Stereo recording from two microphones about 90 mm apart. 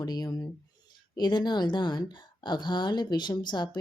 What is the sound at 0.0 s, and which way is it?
A woman's voice, 50° left (ahead or behind).